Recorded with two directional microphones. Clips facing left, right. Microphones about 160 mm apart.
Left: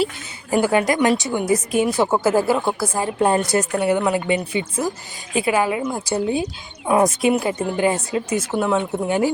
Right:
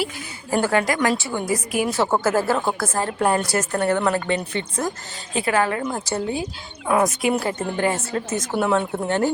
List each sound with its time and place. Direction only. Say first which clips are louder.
0.5 s a woman's voice: left 3 dB; 15° left (ahead or behind)
3.2 s a woman's voice: left 4 dB; 20° left (ahead or behind)
8.5 s speech: even; centre (ahead or behind)